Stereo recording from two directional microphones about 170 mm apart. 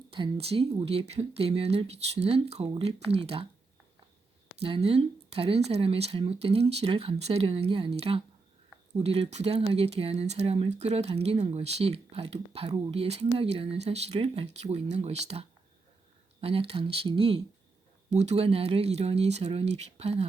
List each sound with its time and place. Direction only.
0.1 s speech: 35° right (ahead or behind)
4.6 s speech: 35° right (ahead or behind)